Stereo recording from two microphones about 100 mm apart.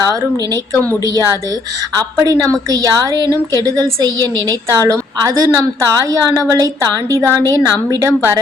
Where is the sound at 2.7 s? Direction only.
40° right (ahead or behind).